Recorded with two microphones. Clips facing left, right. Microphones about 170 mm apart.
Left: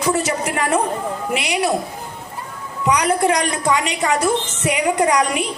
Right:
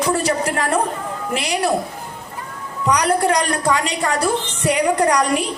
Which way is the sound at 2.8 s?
5° left (ahead or behind).